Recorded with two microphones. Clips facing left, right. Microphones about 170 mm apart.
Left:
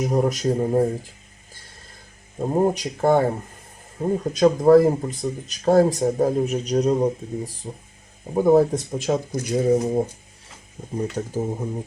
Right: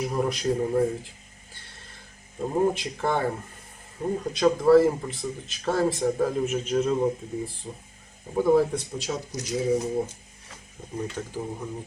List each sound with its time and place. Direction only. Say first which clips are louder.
0.0 s speech: left 5 dB; 45° left (ahead or behind)
2.4 s speech: left 4 dB; 40° left (ahead or behind)
11.2 s speech: left 6 dB; 40° left (ahead or behind)